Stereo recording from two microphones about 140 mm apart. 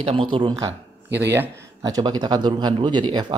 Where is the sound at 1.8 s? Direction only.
30° right (ahead or behind).